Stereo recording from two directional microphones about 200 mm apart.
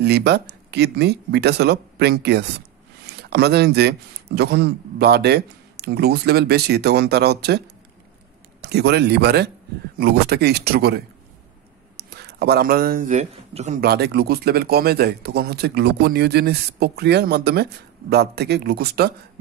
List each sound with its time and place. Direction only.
0.0 s speech: 55° right (ahead or behind)
8.5 s speech: 55° right (ahead or behind)
12.0 s speech: 55° right (ahead or behind); by 13.7 s 30° right (ahead or behind)
13.7 s speech: 55° right (ahead or behind)